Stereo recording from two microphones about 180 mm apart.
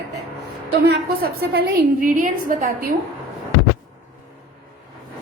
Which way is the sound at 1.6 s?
50° right (ahead or behind).